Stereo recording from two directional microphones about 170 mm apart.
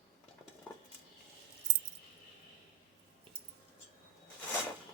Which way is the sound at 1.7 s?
90° right.